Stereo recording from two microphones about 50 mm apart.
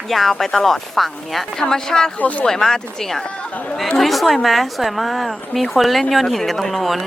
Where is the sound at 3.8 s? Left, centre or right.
Centre.